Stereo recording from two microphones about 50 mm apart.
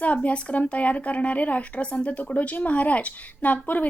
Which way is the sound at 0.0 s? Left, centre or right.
Left.